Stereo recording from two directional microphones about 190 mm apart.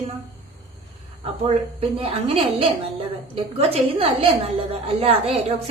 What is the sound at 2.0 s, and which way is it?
A woman's voice, 30° right (ahead or behind).